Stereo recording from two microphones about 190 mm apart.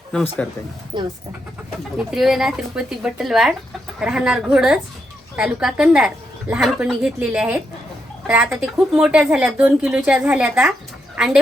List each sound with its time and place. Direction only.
0.1 s a woman's voice: 5° left (ahead or behind)
0.9 s speech: 20° right (ahead or behind)
2.0 s a woman's voice: 5° right (ahead or behind)
11.1 s a sound: 5° right (ahead or behind)